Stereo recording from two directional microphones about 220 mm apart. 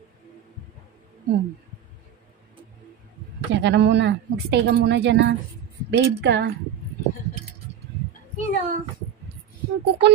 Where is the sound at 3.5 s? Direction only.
55° right (ahead or behind).